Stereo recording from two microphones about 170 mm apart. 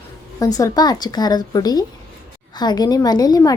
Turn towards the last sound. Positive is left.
turn(degrees=20)  # may be behind; listen again after turning